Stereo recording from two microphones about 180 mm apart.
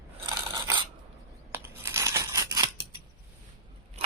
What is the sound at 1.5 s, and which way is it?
Scissors, 15° right (ahead or behind).